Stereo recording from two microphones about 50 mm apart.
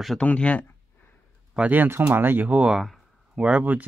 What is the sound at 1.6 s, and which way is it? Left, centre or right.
Speech, centre.